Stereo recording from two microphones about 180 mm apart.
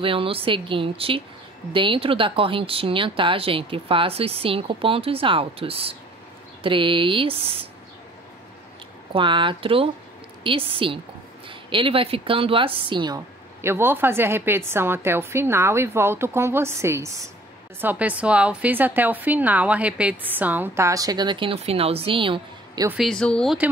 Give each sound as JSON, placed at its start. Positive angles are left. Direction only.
{"t": 0.0, "sound": "a woman's voice", "side_deg": -30}
{"t": 9.1, "sound": "a woman's voice", "side_deg": -25}
{"t": 22.8, "sound": "speech", "side_deg": 0}